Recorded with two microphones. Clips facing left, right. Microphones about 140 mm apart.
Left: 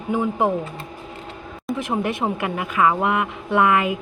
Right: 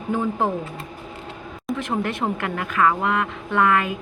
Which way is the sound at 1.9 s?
15° left (ahead or behind).